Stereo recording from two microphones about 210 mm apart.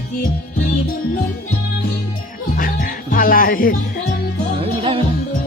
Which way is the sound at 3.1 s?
40° left (ahead or behind).